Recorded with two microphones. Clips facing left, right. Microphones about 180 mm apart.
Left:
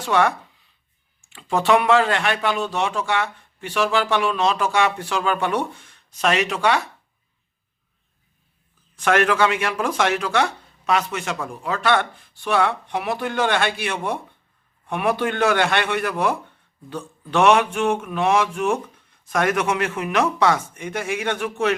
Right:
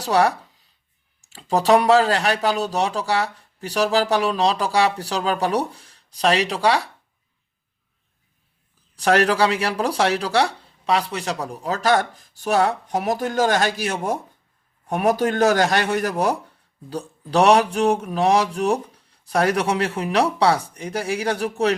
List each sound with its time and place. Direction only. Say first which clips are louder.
0.0 s a sound: right 1 dB; 35° right (ahead or behind)
1.2 s a man's voice: right 2 dB; 35° right (ahead or behind)
9.0 s a man's voice: right 1 dB; 35° right (ahead or behind)